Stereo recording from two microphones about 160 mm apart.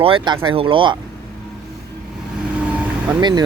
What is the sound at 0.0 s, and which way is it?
Speech, 35° right (ahead or behind).